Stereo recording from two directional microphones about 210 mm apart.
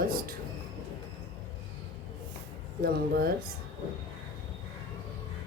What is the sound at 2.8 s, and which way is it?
Speech, 45° right (ahead or behind).